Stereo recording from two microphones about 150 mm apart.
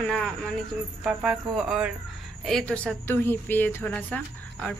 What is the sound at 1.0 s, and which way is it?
A woman's voice, 5° right (ahead or behind).